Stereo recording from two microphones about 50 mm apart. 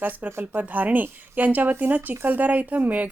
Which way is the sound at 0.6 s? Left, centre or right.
Right.